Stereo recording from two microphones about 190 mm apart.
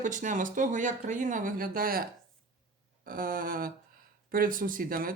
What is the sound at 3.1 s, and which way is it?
Speech, 50° right (ahead or behind).